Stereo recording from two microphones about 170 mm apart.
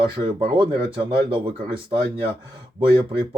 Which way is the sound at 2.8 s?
30° right (ahead or behind).